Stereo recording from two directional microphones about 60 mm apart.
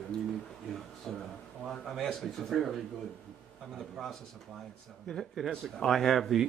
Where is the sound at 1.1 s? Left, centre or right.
Centre.